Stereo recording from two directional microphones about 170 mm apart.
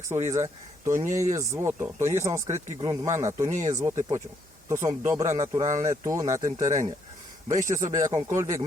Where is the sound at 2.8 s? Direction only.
20° right (ahead or behind).